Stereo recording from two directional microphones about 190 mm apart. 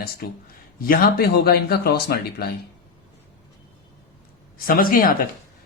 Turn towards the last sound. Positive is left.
turn(degrees=50)  # may be behind; listen again after turning